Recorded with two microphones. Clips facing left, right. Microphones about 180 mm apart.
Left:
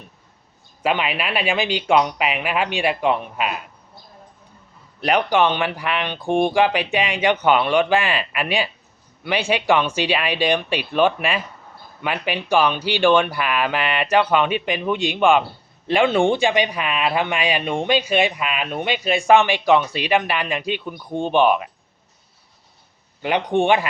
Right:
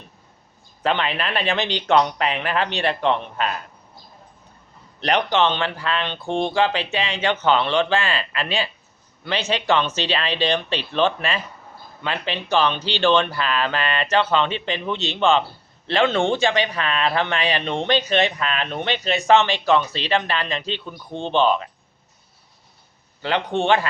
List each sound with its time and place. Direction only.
0.8 s speech: 10° left (ahead or behind)
4.9 s speech: 10° left (ahead or behind)
23.2 s speech: 15° left (ahead or behind)